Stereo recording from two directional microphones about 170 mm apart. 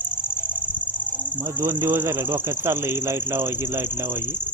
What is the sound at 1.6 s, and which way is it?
Speech, 15° right (ahead or behind).